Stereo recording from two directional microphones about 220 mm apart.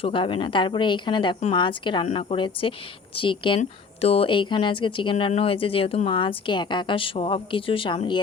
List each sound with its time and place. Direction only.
0.0 s speech: 25° left (ahead or behind)